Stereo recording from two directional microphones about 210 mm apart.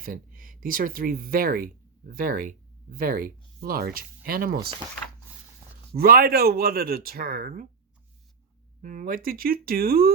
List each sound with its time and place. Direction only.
0.0 s speech: 40° right (ahead or behind)
5.9 s speech: 45° right (ahead or behind)
8.8 s speech: 40° right (ahead or behind)